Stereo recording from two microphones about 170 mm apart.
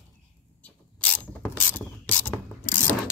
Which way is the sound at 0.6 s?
10° left (ahead or behind).